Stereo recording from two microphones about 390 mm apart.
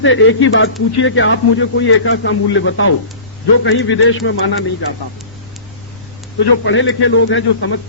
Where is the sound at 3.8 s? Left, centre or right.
Left.